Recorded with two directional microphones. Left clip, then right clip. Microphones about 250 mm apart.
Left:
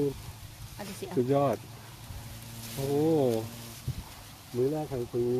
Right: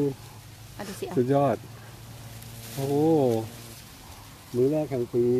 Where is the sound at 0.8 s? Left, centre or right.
Right.